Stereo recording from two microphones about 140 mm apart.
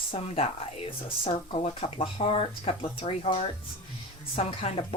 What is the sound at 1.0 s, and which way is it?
Speech, 40° left (ahead or behind).